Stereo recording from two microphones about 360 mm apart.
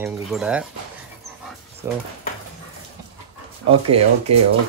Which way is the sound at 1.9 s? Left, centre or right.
Centre.